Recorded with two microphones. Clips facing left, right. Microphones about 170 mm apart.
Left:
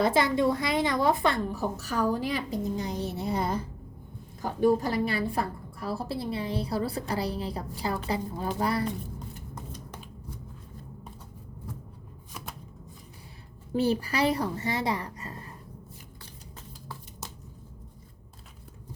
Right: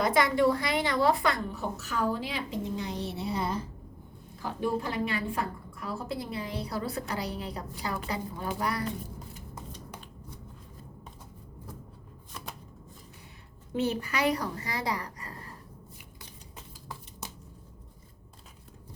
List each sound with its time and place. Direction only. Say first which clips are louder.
0.0 s a woman's voice: left 1 dB; 25° left (ahead or behind)
13.7 s a woman's voice: left 4 dB; 35° left (ahead or behind)